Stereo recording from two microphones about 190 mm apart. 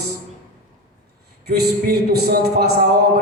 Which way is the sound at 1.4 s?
55° right (ahead or behind).